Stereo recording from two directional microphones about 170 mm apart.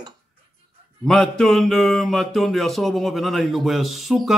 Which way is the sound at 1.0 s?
5° left (ahead or behind).